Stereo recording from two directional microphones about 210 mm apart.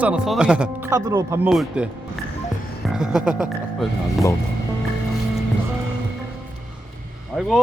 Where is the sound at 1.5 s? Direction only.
Centre (ahead or behind).